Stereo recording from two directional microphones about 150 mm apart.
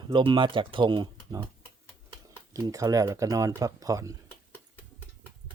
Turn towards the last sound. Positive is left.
turn(degrees=-20)  # may be behind; listen again after turning